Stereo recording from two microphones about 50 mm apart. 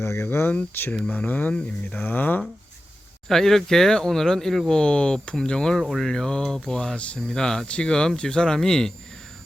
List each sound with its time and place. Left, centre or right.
0.0 s speech: left
0.3 s speech: left
1.1 s speech: left
3.2 s speech: centre
4.7 s speech: centre